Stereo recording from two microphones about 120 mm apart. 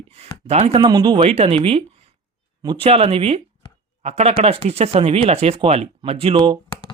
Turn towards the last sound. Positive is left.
turn(degrees=-40)  # may be behind; listen again after turning